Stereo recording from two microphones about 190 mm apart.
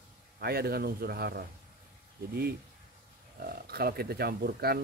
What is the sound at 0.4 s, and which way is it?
Speech, 55° right (ahead or behind).